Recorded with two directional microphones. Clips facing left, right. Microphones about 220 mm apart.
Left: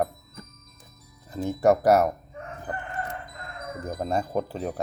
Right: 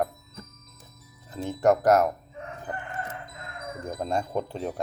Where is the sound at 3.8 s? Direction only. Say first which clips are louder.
Left 1 dB; 5° left (ahead or behind).